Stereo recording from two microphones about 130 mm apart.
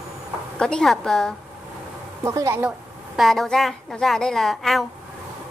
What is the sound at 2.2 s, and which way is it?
Speech, 20° right (ahead or behind).